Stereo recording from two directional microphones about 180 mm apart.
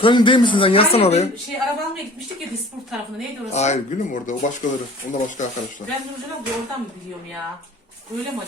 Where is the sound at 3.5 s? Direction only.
40° left (ahead or behind).